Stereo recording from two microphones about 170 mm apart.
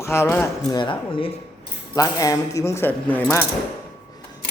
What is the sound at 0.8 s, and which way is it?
Speech, 30° left (ahead or behind).